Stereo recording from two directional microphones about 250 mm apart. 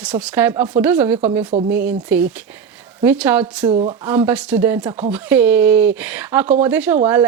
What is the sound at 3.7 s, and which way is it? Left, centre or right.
Speech, right.